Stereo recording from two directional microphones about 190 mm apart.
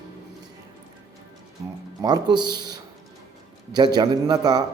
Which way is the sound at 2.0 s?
20° right (ahead or behind).